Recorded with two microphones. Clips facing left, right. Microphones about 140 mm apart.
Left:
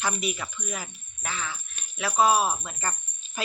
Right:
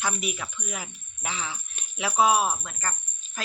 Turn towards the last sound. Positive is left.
turn(degrees=15)  # may be behind; listen again after turning